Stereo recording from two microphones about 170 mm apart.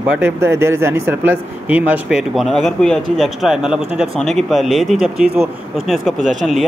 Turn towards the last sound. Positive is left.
turn(degrees=0)  # may be behind; listen again after turning